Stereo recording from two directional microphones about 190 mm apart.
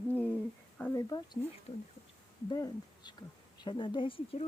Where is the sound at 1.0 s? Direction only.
20° left (ahead or behind).